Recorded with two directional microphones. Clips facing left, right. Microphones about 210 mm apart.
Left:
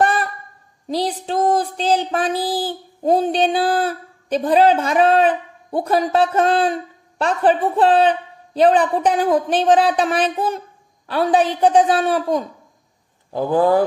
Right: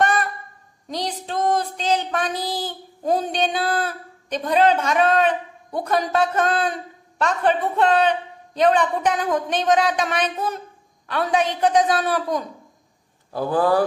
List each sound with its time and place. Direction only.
0.8 s a woman's voice: 30° left (ahead or behind)